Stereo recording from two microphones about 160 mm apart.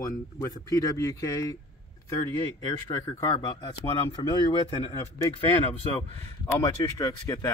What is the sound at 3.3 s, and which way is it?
Speech, 30° left (ahead or behind).